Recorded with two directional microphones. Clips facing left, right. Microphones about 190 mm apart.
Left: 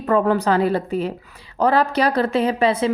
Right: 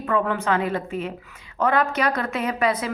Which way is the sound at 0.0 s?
40° left (ahead or behind).